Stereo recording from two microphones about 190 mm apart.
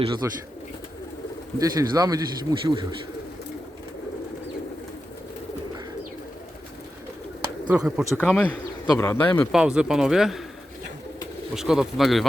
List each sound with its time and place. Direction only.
0.2 s speech: 15° right (ahead or behind)
1.5 s speech: 20° right (ahead or behind)
7.7 s speech: 5° right (ahead or behind)
9.5 s speech: 5° right (ahead or behind)
11.5 s speech: centre (ahead or behind)